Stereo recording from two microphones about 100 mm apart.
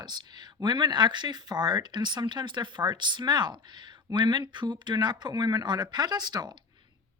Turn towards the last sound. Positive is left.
turn(degrees=-45)  # may be behind; listen again after turning